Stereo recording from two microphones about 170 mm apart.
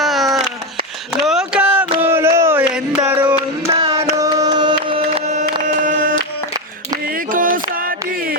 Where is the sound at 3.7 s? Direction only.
20° right (ahead or behind).